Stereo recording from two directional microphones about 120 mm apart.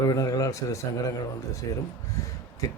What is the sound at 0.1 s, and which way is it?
A man's voice, 30° left (ahead or behind).